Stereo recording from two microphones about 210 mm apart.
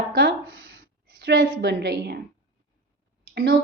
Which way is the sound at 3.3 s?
50° right (ahead or behind).